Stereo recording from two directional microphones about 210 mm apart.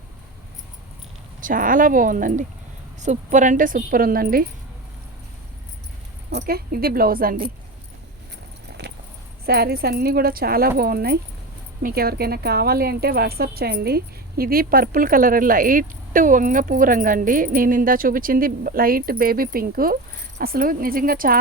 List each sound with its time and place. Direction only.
1.4 s a woman's voice: 40° right (ahead or behind)
6.3 s speech: 45° right (ahead or behind)
8.8 s a sound: 55° right (ahead or behind)
9.5 s speech: 45° right (ahead or behind)